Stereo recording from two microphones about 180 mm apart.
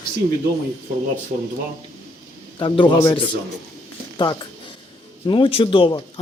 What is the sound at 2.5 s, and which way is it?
Speech, 25° left (ahead or behind).